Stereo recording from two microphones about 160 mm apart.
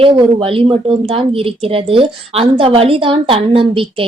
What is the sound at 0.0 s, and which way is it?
Child singing, 35° right (ahead or behind).